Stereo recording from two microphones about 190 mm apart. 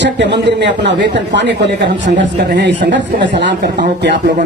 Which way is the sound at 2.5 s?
65° right (ahead or behind).